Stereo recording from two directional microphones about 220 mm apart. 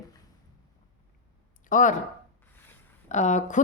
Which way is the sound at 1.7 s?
35° left (ahead or behind).